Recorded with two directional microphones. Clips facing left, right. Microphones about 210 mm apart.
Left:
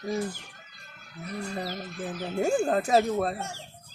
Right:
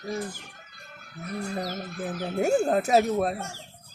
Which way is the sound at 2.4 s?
10° right (ahead or behind).